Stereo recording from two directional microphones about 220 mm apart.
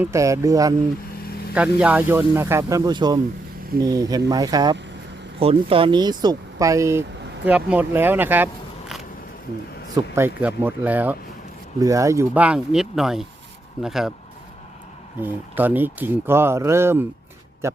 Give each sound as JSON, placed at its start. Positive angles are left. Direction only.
{"t": 0.0, "sound": "speech", "side_deg": -15}
{"t": 9.9, "sound": "speech", "side_deg": -10}
{"t": 15.2, "sound": "speech", "side_deg": -10}